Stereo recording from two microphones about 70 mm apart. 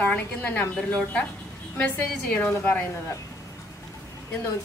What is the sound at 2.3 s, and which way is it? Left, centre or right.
Speech, left.